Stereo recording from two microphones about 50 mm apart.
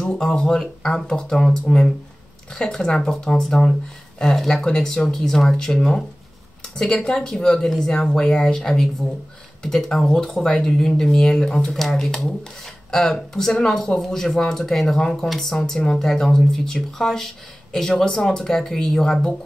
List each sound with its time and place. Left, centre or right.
0.0 s speech: centre
6.8 s speech: centre
10.3 s speech: centre
10.9 s speech: centre